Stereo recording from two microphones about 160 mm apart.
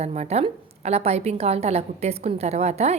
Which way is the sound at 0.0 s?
45° right (ahead or behind).